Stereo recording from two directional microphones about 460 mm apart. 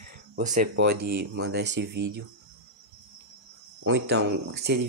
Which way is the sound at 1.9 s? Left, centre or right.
Right.